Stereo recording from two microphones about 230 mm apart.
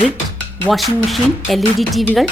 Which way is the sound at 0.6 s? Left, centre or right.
Centre.